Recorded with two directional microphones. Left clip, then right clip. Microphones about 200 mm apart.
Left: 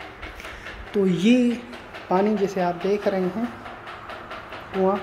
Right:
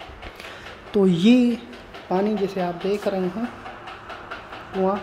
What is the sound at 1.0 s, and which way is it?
Speech, 15° right (ahead or behind).